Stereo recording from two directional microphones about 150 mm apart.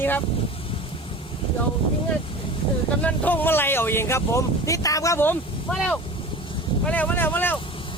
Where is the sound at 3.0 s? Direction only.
10° left (ahead or behind).